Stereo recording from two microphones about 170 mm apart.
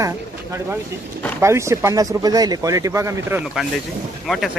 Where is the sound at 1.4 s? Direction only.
15° right (ahead or behind).